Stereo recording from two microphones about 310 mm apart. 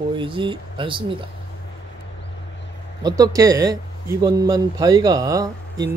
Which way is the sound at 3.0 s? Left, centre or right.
Centre.